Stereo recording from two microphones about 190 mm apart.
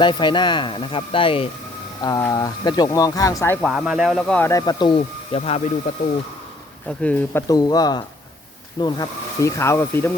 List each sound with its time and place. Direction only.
0.0 s speech: 25° left (ahead or behind)
3.7 s speech: 5° right (ahead or behind); by 5.6 s 35° left (ahead or behind)
6.8 s speech: 5° left (ahead or behind)
7.4 s speech: 20° left (ahead or behind)